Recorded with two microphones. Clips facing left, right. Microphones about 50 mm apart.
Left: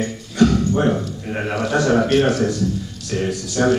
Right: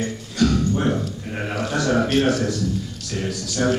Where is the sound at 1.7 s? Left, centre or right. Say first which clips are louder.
Left 5 dB; left.